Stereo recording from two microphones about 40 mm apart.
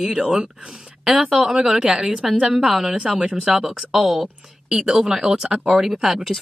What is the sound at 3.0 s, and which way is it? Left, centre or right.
Speech, right.